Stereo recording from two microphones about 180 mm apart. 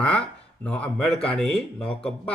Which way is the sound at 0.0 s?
5° left (ahead or behind).